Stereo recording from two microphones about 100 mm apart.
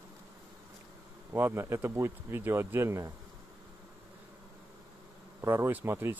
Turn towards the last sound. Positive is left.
turn(degrees=-20)  # may be behind; listen again after turning